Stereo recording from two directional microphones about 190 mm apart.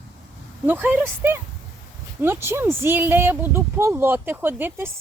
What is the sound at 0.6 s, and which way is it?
A woman's voice, 10° right (ahead or behind).